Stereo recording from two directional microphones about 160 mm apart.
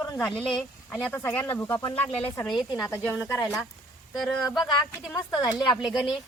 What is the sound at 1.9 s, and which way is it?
Speech, 40° left (ahead or behind).